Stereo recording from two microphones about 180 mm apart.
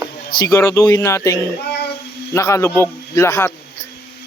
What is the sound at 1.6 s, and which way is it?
Child singing, 65° left (ahead or behind).